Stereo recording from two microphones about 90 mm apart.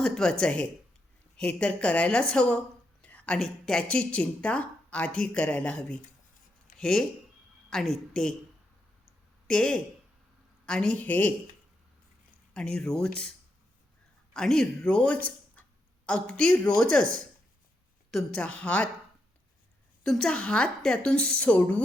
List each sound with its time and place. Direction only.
0.0 s a woman's voice: 5° left (ahead or behind)
3.0 s a sound: 15° left (ahead or behind)
3.3 s a woman's voice: 5° left (ahead or behind)
9.5 s a woman's voice: 10° left (ahead or behind)
12.5 s a woman's voice: 10° left (ahead or behind)
14.3 s a woman's voice: 5° left (ahead or behind)
18.3 s a woman's voice: 15° left (ahead or behind)
20.1 s a woman's voice: 5° left (ahead or behind)